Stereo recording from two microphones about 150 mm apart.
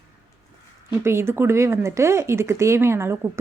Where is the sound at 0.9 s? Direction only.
15° right (ahead or behind).